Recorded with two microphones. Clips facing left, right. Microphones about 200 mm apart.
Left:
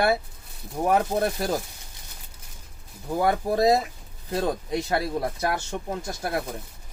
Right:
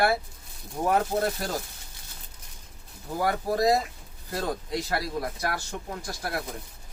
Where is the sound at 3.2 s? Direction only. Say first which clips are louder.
Left 3 dB; 25° left (ahead or behind).